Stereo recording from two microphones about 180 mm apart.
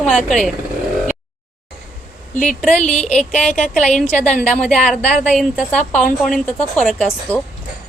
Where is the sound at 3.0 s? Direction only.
5° left (ahead or behind).